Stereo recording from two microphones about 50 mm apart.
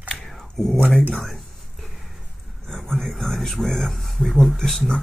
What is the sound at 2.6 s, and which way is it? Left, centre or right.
Speech, centre.